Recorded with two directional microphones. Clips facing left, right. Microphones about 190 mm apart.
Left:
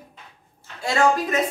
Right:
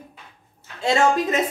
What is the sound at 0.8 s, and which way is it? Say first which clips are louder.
Speech: right 1 dB; 25° right (ahead or behind).